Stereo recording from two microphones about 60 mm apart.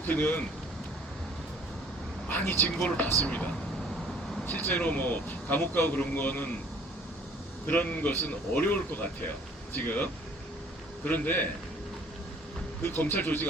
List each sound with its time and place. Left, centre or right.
0.1 s speech: left
2.3 s speech: left
7.7 s speech: left
12.8 s speech: left